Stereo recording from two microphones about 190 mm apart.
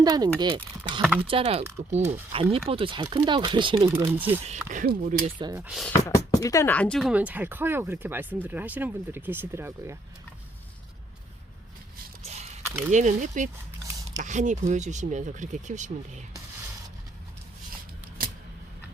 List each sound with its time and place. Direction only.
0.0 s speech: 20° right (ahead or behind)
4.7 s speech: 45° right (ahead or behind)
5.2 s speech: 25° right (ahead or behind)
5.5 s speech: 5° right (ahead or behind)
6.1 s speech: 15° left (ahead or behind)
7.1 s speech: 5° right (ahead or behind)
12.2 s a sound: 35° right (ahead or behind)
12.6 s a sound: 10° right (ahead or behind)
12.9 s speech: 40° right (ahead or behind)